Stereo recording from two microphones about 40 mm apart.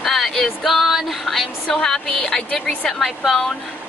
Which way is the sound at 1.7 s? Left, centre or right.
Centre.